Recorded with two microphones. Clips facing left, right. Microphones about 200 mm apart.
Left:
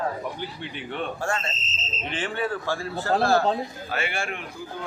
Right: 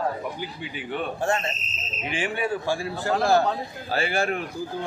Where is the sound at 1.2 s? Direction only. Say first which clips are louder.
Right 3 dB; 20° right (ahead or behind).